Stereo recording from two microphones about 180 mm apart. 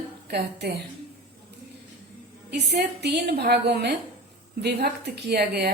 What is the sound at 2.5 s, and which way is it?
A woman's voice, 65° right (ahead or behind).